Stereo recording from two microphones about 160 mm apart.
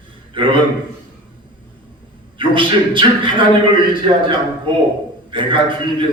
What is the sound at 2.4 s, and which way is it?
A man's voice, 30° right (ahead or behind).